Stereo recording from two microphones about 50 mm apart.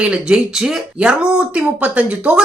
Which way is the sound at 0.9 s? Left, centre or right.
Centre.